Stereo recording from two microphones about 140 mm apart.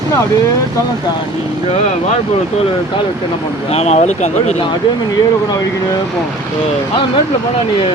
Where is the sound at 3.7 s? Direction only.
50° left (ahead or behind).